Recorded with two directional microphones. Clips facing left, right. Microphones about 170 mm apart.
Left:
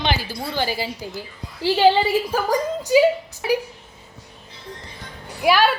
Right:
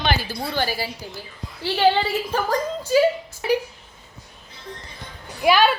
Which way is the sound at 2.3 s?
10° left (ahead or behind).